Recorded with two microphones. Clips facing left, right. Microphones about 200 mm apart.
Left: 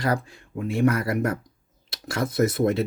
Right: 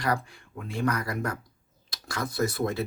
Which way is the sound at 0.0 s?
25° left (ahead or behind).